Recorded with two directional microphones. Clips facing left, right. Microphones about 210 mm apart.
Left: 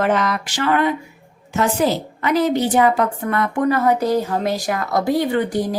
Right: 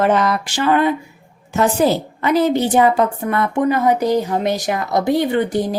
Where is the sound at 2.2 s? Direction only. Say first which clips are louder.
Right 1 dB; 30° right (ahead or behind).